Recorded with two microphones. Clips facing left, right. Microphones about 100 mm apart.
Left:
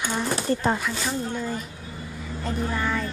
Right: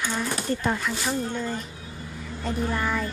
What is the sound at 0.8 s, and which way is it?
Speech, 5° right (ahead or behind).